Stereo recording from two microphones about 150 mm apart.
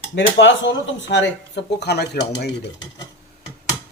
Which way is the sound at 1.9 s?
90° left.